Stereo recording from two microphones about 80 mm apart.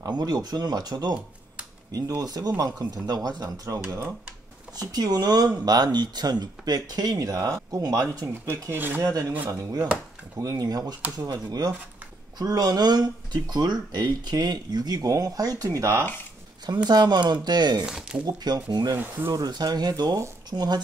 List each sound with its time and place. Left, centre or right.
0.0 s speech: right
8.6 s speech: right
9.5 s speech: right
16.6 s speech: right
17.8 s speech: centre
18.2 s speech: right